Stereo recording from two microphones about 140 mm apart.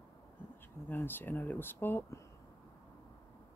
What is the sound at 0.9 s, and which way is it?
Speech, 15° left (ahead or behind).